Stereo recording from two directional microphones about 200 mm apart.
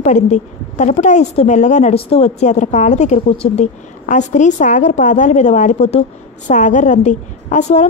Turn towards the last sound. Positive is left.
turn(degrees=35)  # may be behind; listen again after turning